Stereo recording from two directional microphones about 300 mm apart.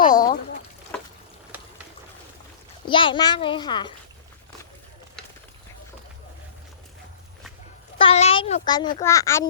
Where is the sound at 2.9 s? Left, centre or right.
Centre.